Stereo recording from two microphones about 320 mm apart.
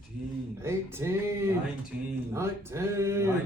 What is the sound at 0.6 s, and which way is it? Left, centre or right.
A man's voice, centre.